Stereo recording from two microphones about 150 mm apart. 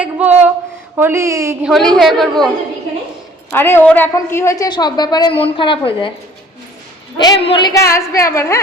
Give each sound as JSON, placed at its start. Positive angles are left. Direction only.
{"t": 0.0, "sound": "speech", "side_deg": -10}
{"t": 0.9, "sound": "a sound", "side_deg": -15}
{"t": 1.6, "sound": "a woman's voice", "side_deg": 0}
{"t": 3.5, "sound": "a woman's voice", "side_deg": 15}
{"t": 7.2, "sound": "a woman's voice", "side_deg": 35}
{"t": 7.7, "sound": "a woman's voice", "side_deg": 20}